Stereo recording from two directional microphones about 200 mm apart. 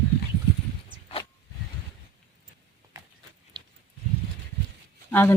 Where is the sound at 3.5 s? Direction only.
20° right (ahead or behind).